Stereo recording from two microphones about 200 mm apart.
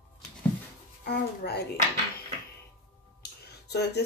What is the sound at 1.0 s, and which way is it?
Babbling, 55° left (ahead or behind).